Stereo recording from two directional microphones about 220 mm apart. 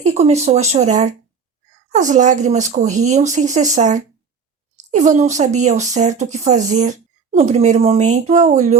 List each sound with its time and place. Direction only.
0.0 s speech: 30° right (ahead or behind)